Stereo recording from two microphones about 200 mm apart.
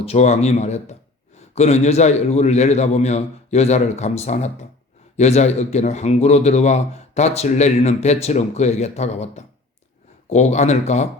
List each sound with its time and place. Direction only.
0.0 s speech: 30° left (ahead or behind)